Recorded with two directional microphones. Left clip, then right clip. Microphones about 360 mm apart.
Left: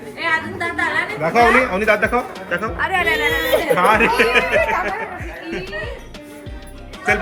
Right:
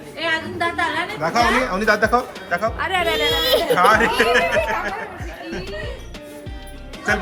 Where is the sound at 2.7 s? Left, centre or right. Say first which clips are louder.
Left 2 dB; right.